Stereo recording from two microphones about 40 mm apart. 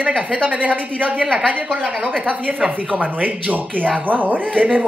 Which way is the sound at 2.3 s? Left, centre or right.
Right.